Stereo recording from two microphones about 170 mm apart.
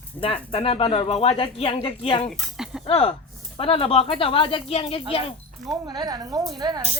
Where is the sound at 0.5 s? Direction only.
35° left (ahead or behind).